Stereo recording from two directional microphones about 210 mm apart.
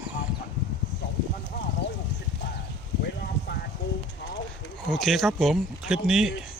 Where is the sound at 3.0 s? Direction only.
50° left (ahead or behind).